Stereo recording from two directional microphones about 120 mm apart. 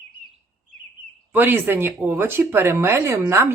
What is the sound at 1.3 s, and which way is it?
Speech, 15° right (ahead or behind).